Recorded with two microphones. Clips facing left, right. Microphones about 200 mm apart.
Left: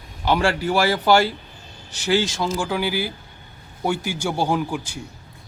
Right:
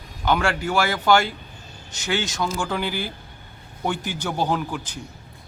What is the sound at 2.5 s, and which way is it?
A man's voice, 5° left (ahead or behind).